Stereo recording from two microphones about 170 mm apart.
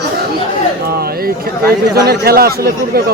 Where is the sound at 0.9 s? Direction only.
65° right (ahead or behind).